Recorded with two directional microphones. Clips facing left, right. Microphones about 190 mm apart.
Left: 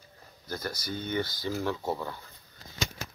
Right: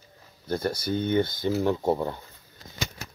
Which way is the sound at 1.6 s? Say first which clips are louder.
Right 8 dB; 25° right (ahead or behind).